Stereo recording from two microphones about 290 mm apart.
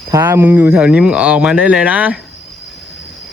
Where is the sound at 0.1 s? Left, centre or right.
Centre.